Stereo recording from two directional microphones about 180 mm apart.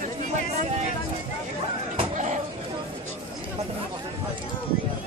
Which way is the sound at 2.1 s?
40° right (ahead or behind).